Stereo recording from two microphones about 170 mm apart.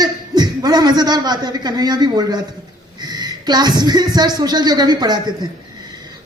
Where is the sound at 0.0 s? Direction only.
25° right (ahead or behind).